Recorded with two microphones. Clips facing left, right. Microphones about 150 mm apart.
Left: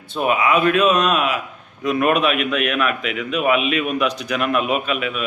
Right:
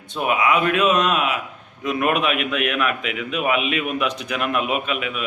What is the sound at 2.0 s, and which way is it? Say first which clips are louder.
A man's voice: left 2 dB; 20° right (ahead or behind).